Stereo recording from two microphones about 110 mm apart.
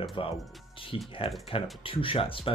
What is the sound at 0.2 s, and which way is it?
Speech, 50° left (ahead or behind).